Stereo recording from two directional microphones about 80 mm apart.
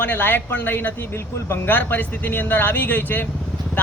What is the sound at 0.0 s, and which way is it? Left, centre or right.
Speech, left.